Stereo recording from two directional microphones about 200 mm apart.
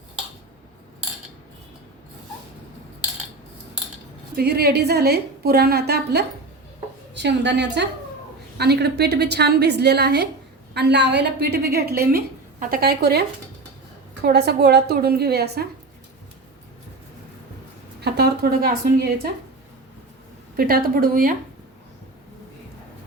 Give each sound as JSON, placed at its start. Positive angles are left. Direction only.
{"t": 4.4, "sound": "a woman's voice", "side_deg": -50}
{"t": 18.0, "sound": "a woman's voice", "side_deg": -50}
{"t": 20.6, "sound": "a woman's voice", "side_deg": -45}